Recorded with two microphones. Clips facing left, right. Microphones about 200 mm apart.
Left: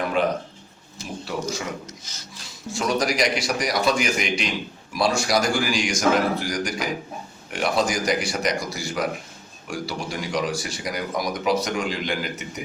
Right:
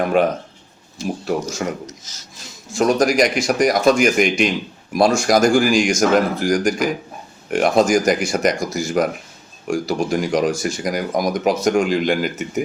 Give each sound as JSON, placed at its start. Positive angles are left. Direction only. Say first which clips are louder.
{"t": 0.1, "sound": "speech", "louder": "right 5 dB", "side_deg": -50}
{"t": 2.7, "sound": "speech", "louder": "right 8 dB", "side_deg": -50}